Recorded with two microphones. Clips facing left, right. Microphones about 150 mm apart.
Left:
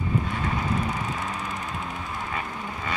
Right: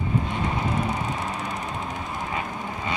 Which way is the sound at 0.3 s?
25° right (ahead or behind).